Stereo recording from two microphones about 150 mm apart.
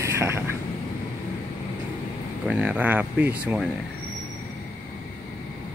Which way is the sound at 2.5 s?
10° right (ahead or behind).